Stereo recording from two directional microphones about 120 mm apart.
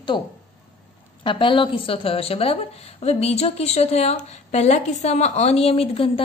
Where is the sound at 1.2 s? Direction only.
45° left (ahead or behind).